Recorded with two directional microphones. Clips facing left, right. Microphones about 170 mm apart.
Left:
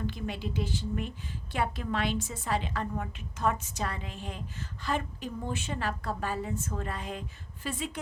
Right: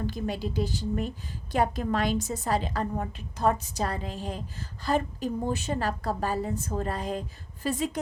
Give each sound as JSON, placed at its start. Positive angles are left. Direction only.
{"t": 0.0, "sound": "a woman's voice", "side_deg": -40}